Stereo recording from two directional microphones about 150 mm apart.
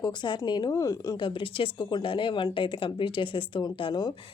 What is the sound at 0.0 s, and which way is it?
Speech, 30° left (ahead or behind).